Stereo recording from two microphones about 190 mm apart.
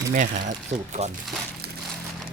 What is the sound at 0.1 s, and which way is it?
Speech, 40° right (ahead or behind).